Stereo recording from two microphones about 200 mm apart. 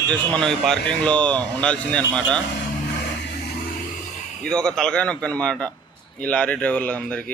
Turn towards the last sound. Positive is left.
turn(degrees=5)  # may be behind; listen again after turning